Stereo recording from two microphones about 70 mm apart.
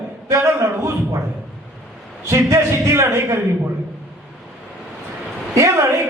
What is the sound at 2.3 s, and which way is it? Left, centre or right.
A man's voice, right.